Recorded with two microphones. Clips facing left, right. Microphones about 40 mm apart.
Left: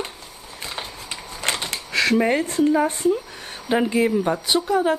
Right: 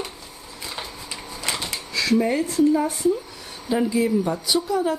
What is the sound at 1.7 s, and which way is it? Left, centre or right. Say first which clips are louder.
Speech: left 2 dB; left.